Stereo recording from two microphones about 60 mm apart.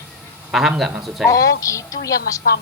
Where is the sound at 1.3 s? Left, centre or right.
Left.